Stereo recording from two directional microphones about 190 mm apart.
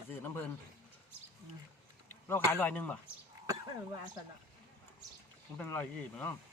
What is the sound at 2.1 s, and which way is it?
Speech, 10° left (ahead or behind).